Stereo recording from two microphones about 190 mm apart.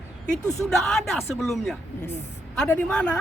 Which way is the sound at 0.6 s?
Centre (ahead or behind).